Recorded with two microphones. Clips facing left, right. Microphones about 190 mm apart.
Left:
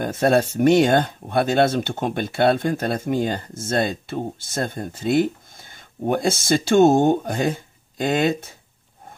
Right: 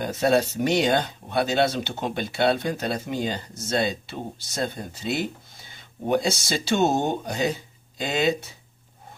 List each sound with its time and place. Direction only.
0.0 s speech: 50° left (ahead or behind)